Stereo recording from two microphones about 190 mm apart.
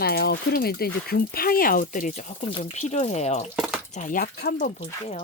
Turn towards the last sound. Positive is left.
turn(degrees=55)  # may be behind; listen again after turning